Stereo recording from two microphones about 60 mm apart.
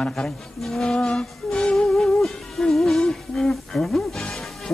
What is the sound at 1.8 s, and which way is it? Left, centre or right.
Music, centre.